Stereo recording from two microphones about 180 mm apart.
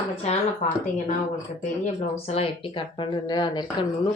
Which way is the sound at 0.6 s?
50° left (ahead or behind).